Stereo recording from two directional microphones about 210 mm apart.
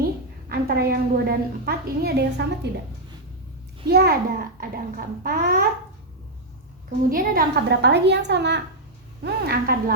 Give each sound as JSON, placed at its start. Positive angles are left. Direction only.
{"t": 0.0, "sound": "a sound", "side_deg": -45}
{"t": 3.8, "sound": "a child's voice", "side_deg": -50}
{"t": 7.1, "sound": "a child's voice", "side_deg": -45}